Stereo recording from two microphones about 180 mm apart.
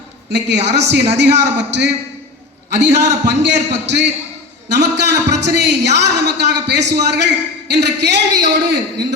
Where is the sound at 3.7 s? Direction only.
70° right (ahead or behind).